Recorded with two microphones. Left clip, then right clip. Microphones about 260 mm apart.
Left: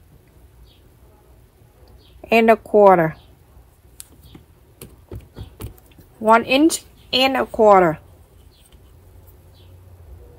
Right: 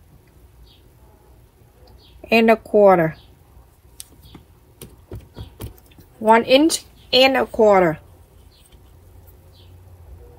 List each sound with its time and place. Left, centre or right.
2.2 s a woman's voice: left
4.0 s a sound: centre
6.2 s speech: centre
7.5 s speech: left